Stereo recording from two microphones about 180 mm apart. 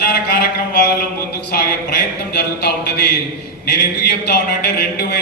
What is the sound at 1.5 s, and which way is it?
A man's voice, 60° left (ahead or behind).